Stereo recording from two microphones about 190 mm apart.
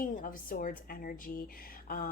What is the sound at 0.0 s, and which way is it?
A woman's voice, 45° left (ahead or behind).